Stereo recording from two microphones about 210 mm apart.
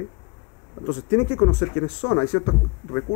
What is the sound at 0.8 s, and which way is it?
Speech, 25° left (ahead or behind).